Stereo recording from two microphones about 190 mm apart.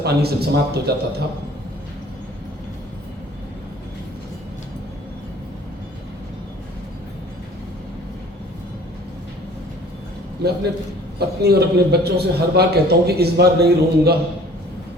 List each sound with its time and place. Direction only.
0.0 s a man's voice: 60° right (ahead or behind)
11.2 s a man's voice: 55° right (ahead or behind)